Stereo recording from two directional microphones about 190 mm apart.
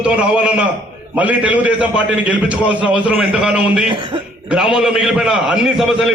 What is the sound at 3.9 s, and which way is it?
Speech, 25° right (ahead or behind).